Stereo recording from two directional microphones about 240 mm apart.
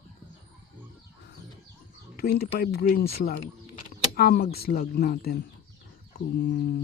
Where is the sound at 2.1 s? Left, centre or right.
Left.